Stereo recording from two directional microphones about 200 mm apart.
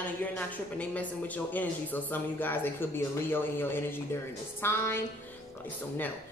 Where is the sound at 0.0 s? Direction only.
10° left (ahead or behind).